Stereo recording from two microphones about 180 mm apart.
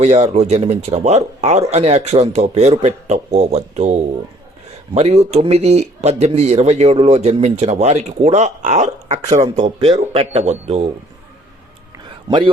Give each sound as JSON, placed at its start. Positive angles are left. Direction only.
{"t": 0.0, "sound": "speech", "side_deg": -35}